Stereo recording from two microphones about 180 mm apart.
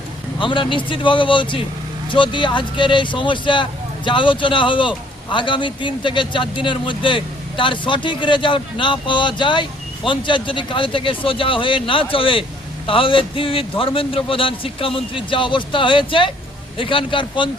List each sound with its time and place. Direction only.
0.3 s speech: 25° left (ahead or behind)